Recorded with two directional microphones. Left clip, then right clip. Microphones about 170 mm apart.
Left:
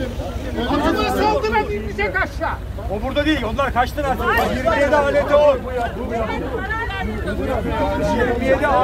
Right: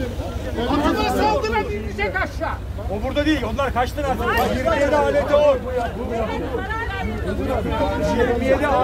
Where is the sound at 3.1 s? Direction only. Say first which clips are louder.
Left 2 dB; 10° right (ahead or behind).